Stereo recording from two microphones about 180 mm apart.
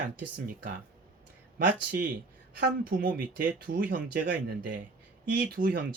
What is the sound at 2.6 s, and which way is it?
Speech, 55° right (ahead or behind).